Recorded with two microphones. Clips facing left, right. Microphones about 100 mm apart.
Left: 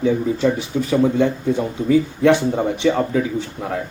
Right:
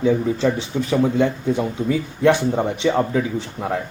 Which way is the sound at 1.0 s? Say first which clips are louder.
Left 1 dB; 15° right (ahead or behind).